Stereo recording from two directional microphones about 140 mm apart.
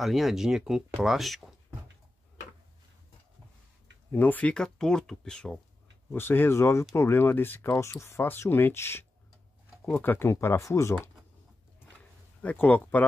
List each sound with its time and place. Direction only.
0.0 s speech: centre (ahead or behind)
4.1 s speech: 15° left (ahead or behind)
6.1 s speech: 15° left (ahead or behind)
12.4 s speech: 10° left (ahead or behind)